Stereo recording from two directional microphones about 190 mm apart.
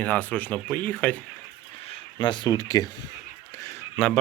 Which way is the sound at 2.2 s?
25° left (ahead or behind).